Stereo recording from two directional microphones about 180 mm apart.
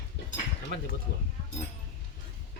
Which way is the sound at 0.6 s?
45° left (ahead or behind).